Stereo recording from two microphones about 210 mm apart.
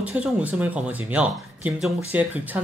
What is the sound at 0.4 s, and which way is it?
Speech, 5° right (ahead or behind).